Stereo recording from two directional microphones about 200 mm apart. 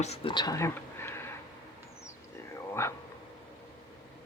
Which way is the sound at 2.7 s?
15° left (ahead or behind).